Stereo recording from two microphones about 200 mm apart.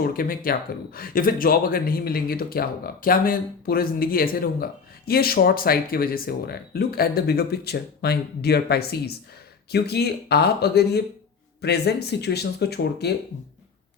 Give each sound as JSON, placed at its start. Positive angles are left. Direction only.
{"t": 0.0, "sound": "speech", "side_deg": 45}